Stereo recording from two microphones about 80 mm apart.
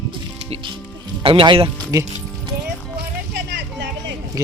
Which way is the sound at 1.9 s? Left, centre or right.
Right.